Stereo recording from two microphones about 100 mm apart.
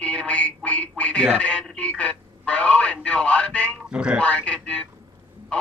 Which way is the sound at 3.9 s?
10° right (ahead or behind).